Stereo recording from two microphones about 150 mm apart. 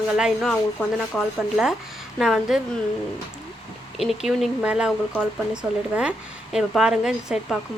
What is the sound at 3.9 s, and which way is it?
Speech, centre (ahead or behind).